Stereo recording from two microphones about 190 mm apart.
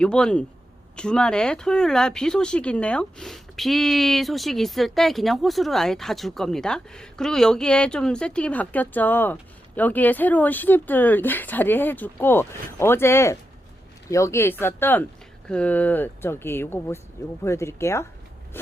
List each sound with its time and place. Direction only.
0.0 s speech: 5° left (ahead or behind)